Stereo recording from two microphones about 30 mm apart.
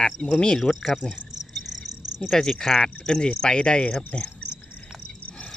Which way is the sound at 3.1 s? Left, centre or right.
Left.